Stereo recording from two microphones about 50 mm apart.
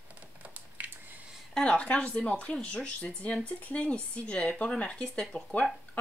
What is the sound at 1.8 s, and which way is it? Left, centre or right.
Speech, left.